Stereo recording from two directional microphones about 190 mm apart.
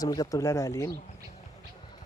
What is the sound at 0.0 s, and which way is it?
Speech, 20° left (ahead or behind).